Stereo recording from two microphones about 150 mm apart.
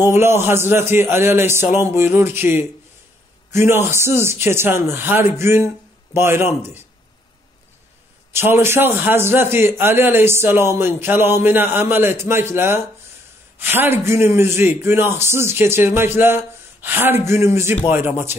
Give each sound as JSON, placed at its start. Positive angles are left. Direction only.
{"t": 0.0, "sound": "a man's voice", "side_deg": -15}
{"t": 8.3, "sound": "a man's voice", "side_deg": -15}